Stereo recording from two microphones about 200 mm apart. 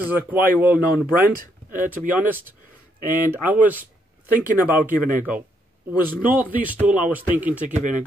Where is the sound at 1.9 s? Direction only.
10° right (ahead or behind).